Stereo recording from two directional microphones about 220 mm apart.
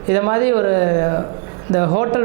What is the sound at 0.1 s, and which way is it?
Speech, 20° right (ahead or behind).